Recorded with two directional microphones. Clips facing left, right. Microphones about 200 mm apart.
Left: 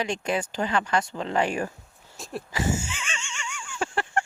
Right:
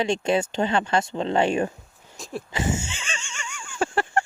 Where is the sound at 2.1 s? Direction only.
Centre (ahead or behind).